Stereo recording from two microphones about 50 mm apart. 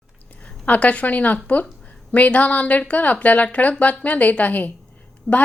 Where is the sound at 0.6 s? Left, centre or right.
Left.